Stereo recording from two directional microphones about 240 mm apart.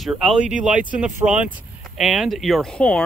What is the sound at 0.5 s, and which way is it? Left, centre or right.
Speech, right.